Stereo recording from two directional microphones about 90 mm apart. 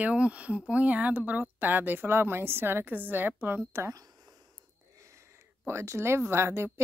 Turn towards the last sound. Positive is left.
turn(degrees=-30)  # may be behind; listen again after turning